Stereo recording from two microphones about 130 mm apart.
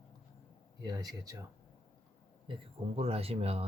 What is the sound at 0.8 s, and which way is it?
Speech, 30° right (ahead or behind).